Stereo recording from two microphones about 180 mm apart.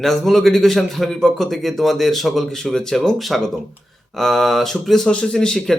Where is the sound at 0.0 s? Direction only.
Centre (ahead or behind).